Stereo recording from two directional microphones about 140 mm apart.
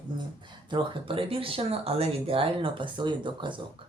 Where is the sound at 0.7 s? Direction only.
40° right (ahead or behind).